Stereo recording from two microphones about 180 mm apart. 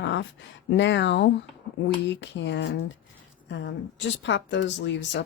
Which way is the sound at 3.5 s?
90° left.